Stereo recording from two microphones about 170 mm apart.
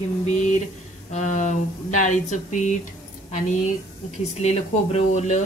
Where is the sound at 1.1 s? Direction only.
45° left (ahead or behind).